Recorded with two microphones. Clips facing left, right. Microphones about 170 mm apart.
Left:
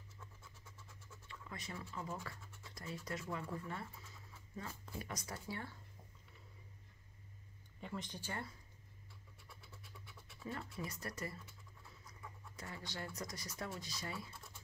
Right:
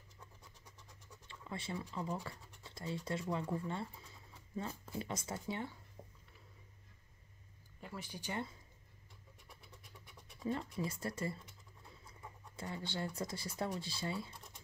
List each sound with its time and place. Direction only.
0.4 s a sound: 15° right (ahead or behind)
1.2 s scratch: 30° right (ahead or behind)
2.0 s speech: 20° right (ahead or behind)
7.8 s speech: 5° right (ahead or behind)
9.5 s scratch: 20° right (ahead or behind)
10.5 s speech: 20° right (ahead or behind)